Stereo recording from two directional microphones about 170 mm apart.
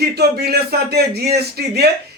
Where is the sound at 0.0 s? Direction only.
70° right (ahead or behind).